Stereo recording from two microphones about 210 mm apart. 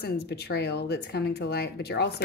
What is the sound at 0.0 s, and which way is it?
Speech, 50° left (ahead or behind).